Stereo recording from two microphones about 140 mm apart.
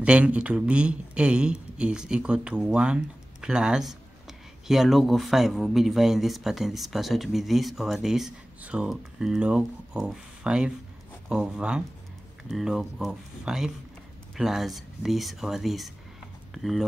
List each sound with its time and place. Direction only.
0.0 s speech: 10° right (ahead or behind)